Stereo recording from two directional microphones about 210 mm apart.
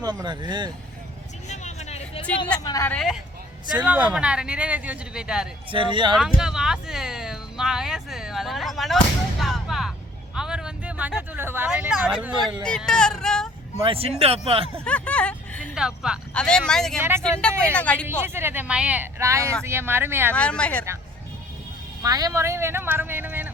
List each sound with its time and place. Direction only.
0.0 s speech: 20° right (ahead or behind)
1.5 s vehicle: 35° left (ahead or behind)
2.6 s speech: 15° left (ahead or behind)
2.9 s speech: centre (ahead or behind)
5.7 s speech: 25° right (ahead or behind)
6.1 s speech: 5° right (ahead or behind)
13.8 s speech: 25° right (ahead or behind)
14.8 s speech: 5° left (ahead or behind)
17.0 s speech: 10° right (ahead or behind)
17.7 s speech: 5° left (ahead or behind)
18.1 s speech: 10° right (ahead or behind)
20.3 s speech: 5° left (ahead or behind)
22.0 s speech: 15° right (ahead or behind)